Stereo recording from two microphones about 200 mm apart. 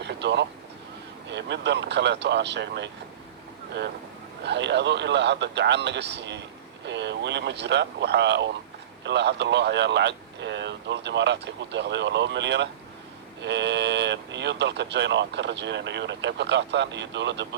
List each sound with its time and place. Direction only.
0.0 s vehicle: 60° right (ahead or behind)
1.3 s speech: 60° right (ahead or behind)
4.4 s speech: 60° right (ahead or behind)